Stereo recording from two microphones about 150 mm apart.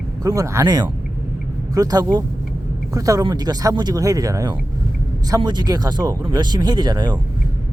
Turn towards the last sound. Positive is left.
turn(degrees=-30)  # may be behind; listen again after turning